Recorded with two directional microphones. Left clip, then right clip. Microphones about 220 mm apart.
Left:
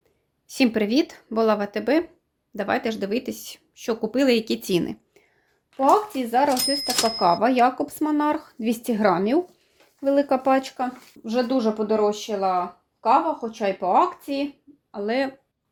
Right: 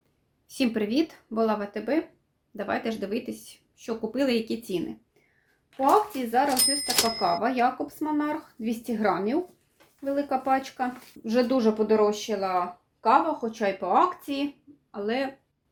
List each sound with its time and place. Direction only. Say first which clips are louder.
0.4 s a woman's voice: left 5 dB; 25° left (ahead or behind); by 4.9 s 45° left (ahead or behind)
6.1 s a woman's voice: left 3 dB; 35° left (ahead or behind)
11.2 s speech: left 1 dB; 15° left (ahead or behind)